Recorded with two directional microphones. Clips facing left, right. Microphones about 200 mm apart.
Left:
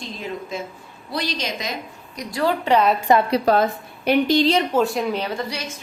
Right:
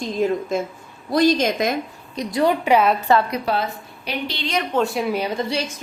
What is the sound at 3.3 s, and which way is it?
A woman's voice, 40° left (ahead or behind).